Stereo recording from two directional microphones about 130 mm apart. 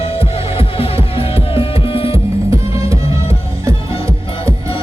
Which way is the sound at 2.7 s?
25° right (ahead or behind).